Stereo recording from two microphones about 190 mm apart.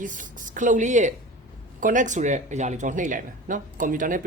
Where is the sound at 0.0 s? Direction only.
45° right (ahead or behind).